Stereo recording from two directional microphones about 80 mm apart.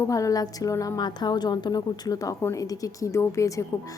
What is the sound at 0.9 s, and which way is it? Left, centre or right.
A woman's voice, left.